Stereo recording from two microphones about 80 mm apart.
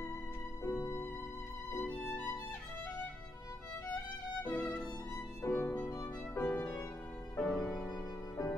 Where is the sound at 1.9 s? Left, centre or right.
Centre.